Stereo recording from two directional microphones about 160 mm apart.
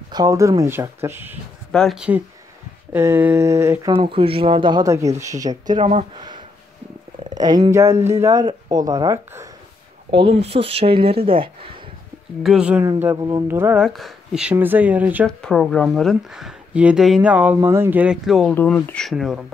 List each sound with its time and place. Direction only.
0.1 s speech: 20° right (ahead or behind)
1.7 s speech: centre (ahead or behind); by 3.9 s 15° right (ahead or behind)
3.9 s speech: 35° right (ahead or behind)
5.8 s speech: 40° right (ahead or behind)
7.2 s speech: 25° right (ahead or behind)
10.1 s speech: 35° right (ahead or behind)
12.4 s speech: 5° right (ahead or behind)
13.0 s speech: 20° right (ahead or behind)
13.8 s speech: centre (ahead or behind)
15.2 s speech: 5° left (ahead or behind)
18.5 s speech: 10° left (ahead or behind)